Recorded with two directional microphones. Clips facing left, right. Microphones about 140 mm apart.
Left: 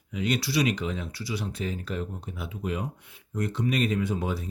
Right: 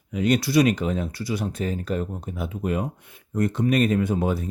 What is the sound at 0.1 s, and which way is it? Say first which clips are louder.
Speech: right 7 dB; 45° right (ahead or behind).